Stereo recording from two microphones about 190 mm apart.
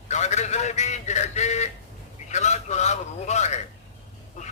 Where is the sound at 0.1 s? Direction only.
35° left (ahead or behind).